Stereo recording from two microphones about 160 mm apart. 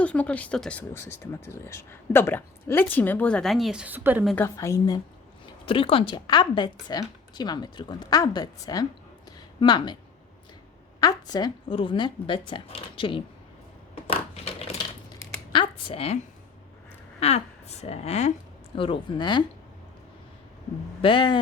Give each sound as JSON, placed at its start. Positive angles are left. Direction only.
{"t": 0.0, "sound": "speech", "side_deg": 10}
{"t": 4.4, "sound": "a woman's voice", "side_deg": 20}
{"t": 5.6, "sound": "a woman's voice", "side_deg": 35}
{"t": 11.0, "sound": "speech", "side_deg": 25}
{"t": 13.9, "sound": "a sound", "side_deg": 40}
{"t": 15.5, "sound": "a woman's voice", "side_deg": 35}
{"t": 17.2, "sound": "speech", "side_deg": 40}
{"t": 18.8, "sound": "a woman's voice", "side_deg": 30}
{"t": 21.0, "sound": "speech", "side_deg": 30}